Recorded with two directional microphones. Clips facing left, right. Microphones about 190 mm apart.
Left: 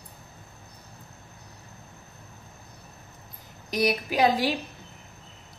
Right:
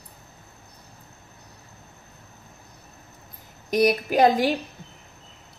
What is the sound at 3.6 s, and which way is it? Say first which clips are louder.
Speech: right 5 dB; 50° right (ahead or behind).